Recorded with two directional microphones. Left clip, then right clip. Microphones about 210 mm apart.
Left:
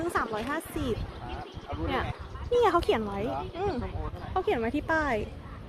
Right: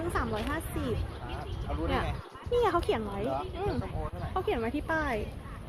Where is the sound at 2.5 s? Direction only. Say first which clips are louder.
Left 3 dB; 25° left (ahead or behind).